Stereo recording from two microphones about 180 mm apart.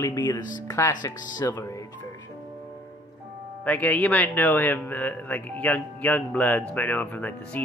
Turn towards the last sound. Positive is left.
turn(degrees=10)  # may be behind; listen again after turning